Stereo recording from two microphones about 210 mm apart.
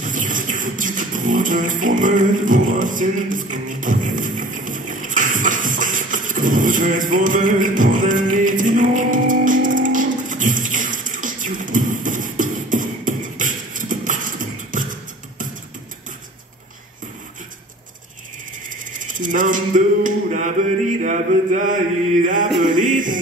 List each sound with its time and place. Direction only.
0.0 s music: 40° right (ahead or behind)
18.9 s a sound: 40° right (ahead or behind)
21.0 s mantra: 35° right (ahead or behind)
22.2 s music: 40° right (ahead or behind)